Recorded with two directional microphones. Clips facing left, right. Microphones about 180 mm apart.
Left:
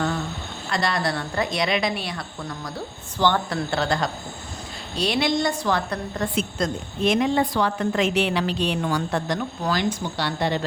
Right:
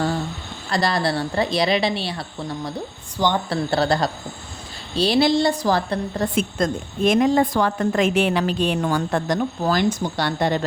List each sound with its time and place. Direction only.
0.7 s a woman's voice: 35° right (ahead or behind)
3.2 s a woman's voice: 15° right (ahead or behind)
3.5 s a woman's voice: 35° right (ahead or behind)
6.3 s a woman's voice: 50° right (ahead or behind)